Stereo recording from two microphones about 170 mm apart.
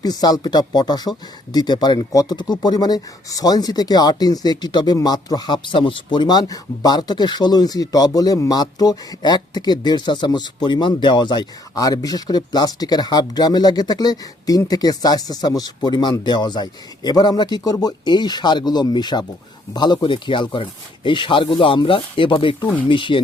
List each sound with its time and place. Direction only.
0.0 s speech: 25° left (ahead or behind)